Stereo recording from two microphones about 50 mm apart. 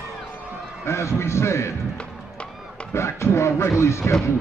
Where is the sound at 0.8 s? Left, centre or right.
Left.